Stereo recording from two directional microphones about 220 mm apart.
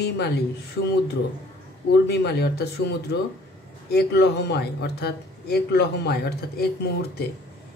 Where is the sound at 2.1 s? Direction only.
50° left (ahead or behind).